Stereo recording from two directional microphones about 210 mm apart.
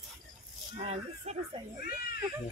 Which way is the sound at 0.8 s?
30° right (ahead or behind).